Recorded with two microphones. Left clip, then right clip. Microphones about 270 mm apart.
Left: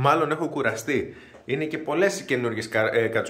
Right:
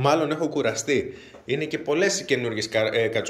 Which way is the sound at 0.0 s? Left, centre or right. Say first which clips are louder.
Even; centre.